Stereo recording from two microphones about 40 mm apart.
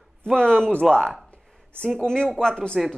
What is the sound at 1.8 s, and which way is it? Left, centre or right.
Speech, centre.